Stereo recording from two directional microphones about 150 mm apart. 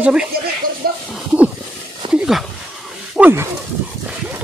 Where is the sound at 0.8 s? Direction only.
90° right.